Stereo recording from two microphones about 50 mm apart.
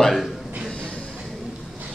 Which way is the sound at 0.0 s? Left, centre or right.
Centre.